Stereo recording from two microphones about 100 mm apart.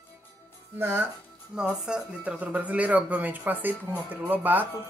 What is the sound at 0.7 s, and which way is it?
Speech, 20° right (ahead or behind).